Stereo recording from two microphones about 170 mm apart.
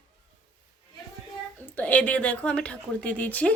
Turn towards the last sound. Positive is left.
turn(degrees=10)  # may be behind; listen again after turning